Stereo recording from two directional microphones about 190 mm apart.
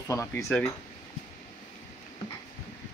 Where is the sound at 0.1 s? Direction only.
15° left (ahead or behind).